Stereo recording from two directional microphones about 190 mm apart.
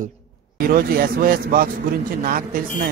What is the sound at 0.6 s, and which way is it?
Speech, 50° right (ahead or behind).